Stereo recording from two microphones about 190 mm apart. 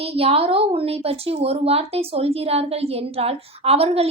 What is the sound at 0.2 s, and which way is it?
Speech, 30° right (ahead or behind).